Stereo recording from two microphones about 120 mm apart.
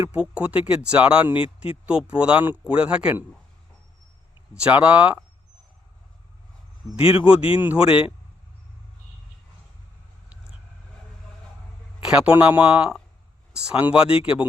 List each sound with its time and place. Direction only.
0.0 s speech: 10° right (ahead or behind)
4.5 s speech: 10° right (ahead or behind)
7.0 s speech: 50° left (ahead or behind)
7.5 s speech: 15° right (ahead or behind)
7.9 s speech: 50° left (ahead or behind)
12.3 s speech: 15° right (ahead or behind)
14.1 s speech: 50° left (ahead or behind)